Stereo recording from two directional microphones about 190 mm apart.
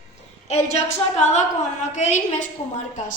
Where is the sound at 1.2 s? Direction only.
35° left (ahead or behind).